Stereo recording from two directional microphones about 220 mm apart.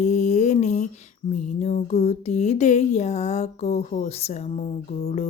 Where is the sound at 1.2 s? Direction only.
30° left (ahead or behind).